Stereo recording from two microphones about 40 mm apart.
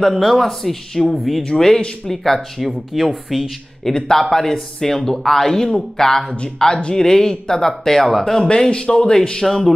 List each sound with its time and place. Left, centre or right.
0.1 s speech: centre
1.1 s speech: centre
1.4 s speech: centre
2.9 s speech: centre
3.8 s speech: centre
8.4 s speech: left